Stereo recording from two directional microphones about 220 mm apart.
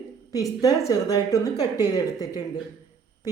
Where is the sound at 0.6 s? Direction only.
15° left (ahead or behind).